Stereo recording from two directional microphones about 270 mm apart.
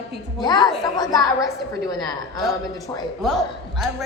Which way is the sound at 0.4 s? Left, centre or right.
Centre.